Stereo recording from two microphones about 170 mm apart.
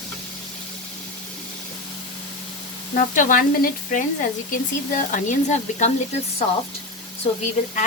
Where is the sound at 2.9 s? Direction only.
50° left (ahead or behind).